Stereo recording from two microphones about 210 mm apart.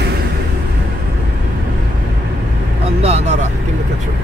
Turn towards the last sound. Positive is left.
turn(degrees=-30)  # may be behind; listen again after turning